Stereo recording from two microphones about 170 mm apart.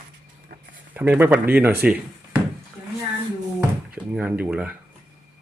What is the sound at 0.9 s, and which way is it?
Speech, 10° right (ahead or behind).